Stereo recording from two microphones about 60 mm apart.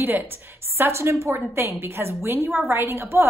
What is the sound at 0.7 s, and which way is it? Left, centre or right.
A woman's voice, right.